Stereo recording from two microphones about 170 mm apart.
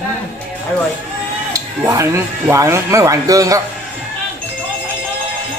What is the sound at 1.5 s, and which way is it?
Speech, 20° right (ahead or behind).